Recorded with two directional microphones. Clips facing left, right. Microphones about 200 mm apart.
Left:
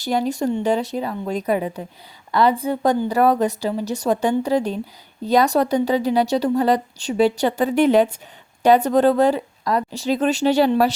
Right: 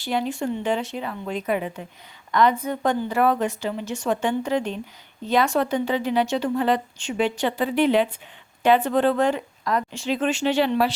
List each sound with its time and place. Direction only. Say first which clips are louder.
0.0 s a woman's voice: left 4 dB; 40° left (ahead or behind)